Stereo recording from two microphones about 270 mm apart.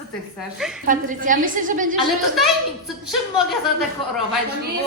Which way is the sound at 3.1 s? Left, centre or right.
Centre.